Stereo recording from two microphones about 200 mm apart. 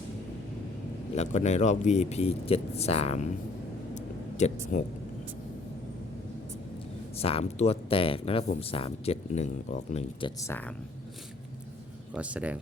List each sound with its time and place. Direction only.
1.1 s speech: 35° left (ahead or behind)
3.9 s a sound: 35° left (ahead or behind)
7.2 s speech: 30° left (ahead or behind)
12.1 s speech: 5° right (ahead or behind)